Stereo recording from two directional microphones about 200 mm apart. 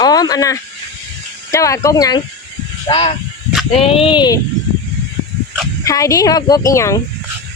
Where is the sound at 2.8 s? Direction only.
30° left (ahead or behind).